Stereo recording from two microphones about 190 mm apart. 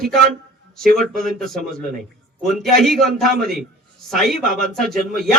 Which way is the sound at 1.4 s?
Centre (ahead or behind).